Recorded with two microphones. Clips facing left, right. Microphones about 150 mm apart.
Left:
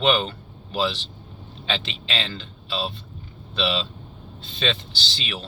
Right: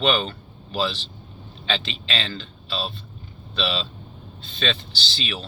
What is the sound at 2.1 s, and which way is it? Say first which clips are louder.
Speech: even; 20° left (ahead or behind).